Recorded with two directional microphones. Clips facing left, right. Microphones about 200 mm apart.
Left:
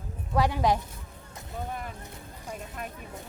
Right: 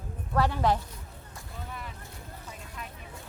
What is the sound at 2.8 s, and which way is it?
Vehicle, 50° left (ahead or behind).